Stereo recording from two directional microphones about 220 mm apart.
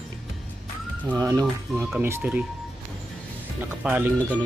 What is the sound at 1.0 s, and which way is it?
Speech, 15° right (ahead or behind).